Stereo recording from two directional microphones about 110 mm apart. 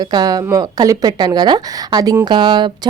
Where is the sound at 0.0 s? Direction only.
40° right (ahead or behind).